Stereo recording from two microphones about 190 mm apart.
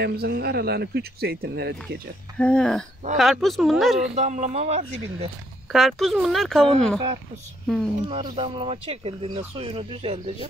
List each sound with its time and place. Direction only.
0.0 s speech: 55° right (ahead or behind)
2.3 s speech: 5° left (ahead or behind)
4.1 s speech: 40° right (ahead or behind)
5.7 s speech: centre (ahead or behind)
7.6 s speech: centre (ahead or behind)
8.1 s speech: 30° right (ahead or behind)